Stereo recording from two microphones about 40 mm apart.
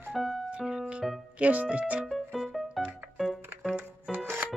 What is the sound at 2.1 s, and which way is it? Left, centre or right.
Music, centre.